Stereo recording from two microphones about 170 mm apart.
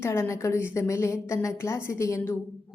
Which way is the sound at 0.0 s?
15° left (ahead or behind).